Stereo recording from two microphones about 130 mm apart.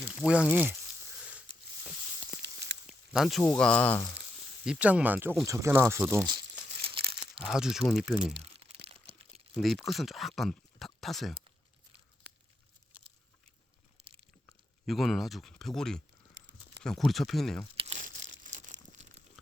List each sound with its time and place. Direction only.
0.2 s speech: 10° right (ahead or behind)
1.2 s a sound: 10° right (ahead or behind)
2.8 s snake: 5° right (ahead or behind)
3.5 s speech: 10° left (ahead or behind)
4.4 s speech: 5° right (ahead or behind); by 6.0 s 20° right (ahead or behind)
6.8 s crumpling: 45° right (ahead or behind)
7.4 s speech: 5° right (ahead or behind)
8.4 s crack: 50° right (ahead or behind)
9.6 s speech: centre (ahead or behind)
14.8 s speech: centre (ahead or behind)
17.9 s crumpling: 80° right